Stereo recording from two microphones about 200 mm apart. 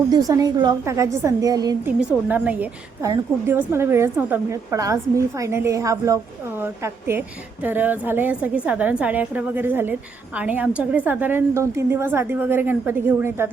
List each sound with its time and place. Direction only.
0.1 s a woman's voice: 20° right (ahead or behind)
1.9 s a woman's voice: 5° right (ahead or behind)